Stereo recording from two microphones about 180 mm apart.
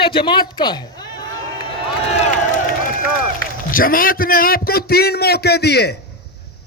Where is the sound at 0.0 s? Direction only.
30° left (ahead or behind).